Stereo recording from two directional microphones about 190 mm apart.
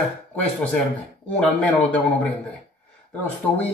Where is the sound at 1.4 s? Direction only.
5° left (ahead or behind).